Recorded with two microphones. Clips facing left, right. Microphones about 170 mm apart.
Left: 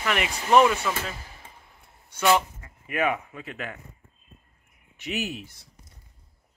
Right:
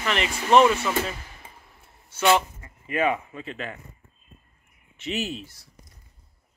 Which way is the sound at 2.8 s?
10° left (ahead or behind).